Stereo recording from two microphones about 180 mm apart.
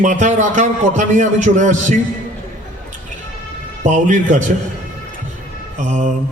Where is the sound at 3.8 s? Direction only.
45° right (ahead or behind).